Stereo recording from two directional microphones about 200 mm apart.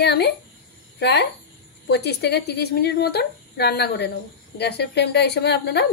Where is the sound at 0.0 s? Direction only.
55° left (ahead or behind).